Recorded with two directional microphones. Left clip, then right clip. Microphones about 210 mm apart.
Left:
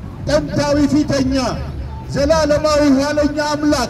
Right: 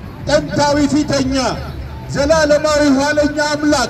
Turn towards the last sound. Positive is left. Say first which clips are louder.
# right 2 dB
turn(degrees=15)  # may be behind; listen again after turning